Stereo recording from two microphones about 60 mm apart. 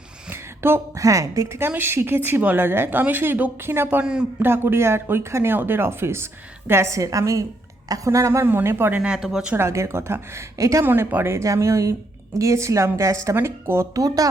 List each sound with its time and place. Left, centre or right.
0.3 s a sound: right
0.9 s speech: right
1.7 s a woman's voice: right
3.6 s a woman's voice: right
4.0 s speech: centre
4.4 s speech: right
8.4 s a woman's voice: right
9.0 s speech: centre
9.6 s speech: right
10.6 s speech: right
10.8 s a woman's voice: right
11.4 s speech: right
13.3 s speech: right
13.9 s speech: right